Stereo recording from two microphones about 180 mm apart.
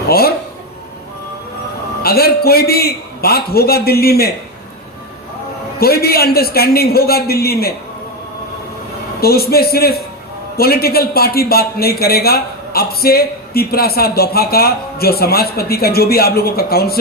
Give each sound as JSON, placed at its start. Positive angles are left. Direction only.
{"t": 0.1, "sound": "a man's voice", "side_deg": 60}
{"t": 2.0, "sound": "a man's voice", "side_deg": 60}
{"t": 5.8, "sound": "a man's voice", "side_deg": 60}
{"t": 9.2, "sound": "a man's voice", "side_deg": 60}